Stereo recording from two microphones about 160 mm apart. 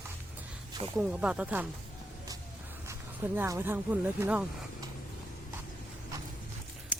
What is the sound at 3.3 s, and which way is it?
Speech, 15° right (ahead or behind).